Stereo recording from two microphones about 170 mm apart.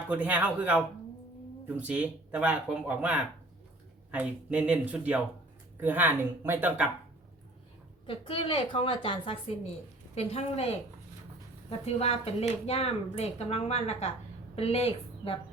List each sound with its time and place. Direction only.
0.1 s speech: 10° right (ahead or behind)
8.0 s speech: 30° left (ahead or behind)
11.9 s speech: 35° left (ahead or behind)